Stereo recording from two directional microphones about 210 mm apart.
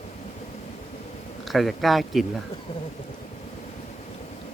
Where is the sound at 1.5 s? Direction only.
Centre (ahead or behind).